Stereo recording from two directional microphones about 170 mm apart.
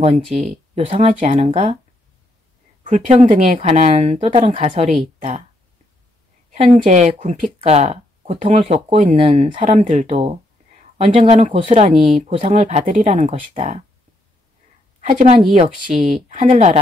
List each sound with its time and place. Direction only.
0.0 s speech: 40° right (ahead or behind)
2.8 s speech: 45° right (ahead or behind)
6.5 s speech: 40° right (ahead or behind)
15.0 s a woman's voice: 45° right (ahead or behind)
15.9 s speech: centre (ahead or behind)
16.3 s speech: 45° right (ahead or behind)